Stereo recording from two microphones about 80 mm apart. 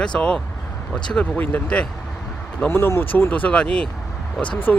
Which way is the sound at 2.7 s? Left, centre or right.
Left.